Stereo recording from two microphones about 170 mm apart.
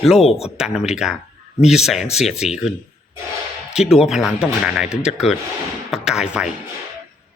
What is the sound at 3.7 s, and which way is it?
Speech, 5° right (ahead or behind).